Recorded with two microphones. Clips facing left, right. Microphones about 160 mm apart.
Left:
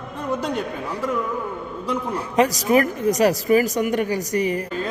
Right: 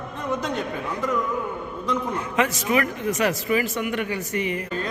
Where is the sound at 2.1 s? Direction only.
35° left (ahead or behind).